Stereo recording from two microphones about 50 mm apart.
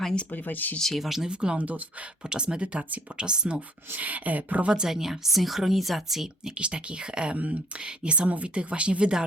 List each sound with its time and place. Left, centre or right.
0.0 s speech: centre
0.3 s speech: left
0.9 s a woman's voice: centre
1.3 s a woman's voice: centre
1.5 s a woman's voice: right
2.3 s a woman's voice: centre
3.9 s a woman's voice: right
4.7 s a woman's voice: centre
6.6 s a woman's voice: right